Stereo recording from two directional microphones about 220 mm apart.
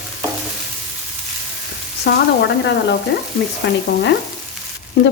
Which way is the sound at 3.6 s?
55° left (ahead or behind).